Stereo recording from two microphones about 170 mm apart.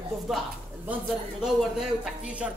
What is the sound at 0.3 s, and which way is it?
A woman's voice, centre (ahead or behind).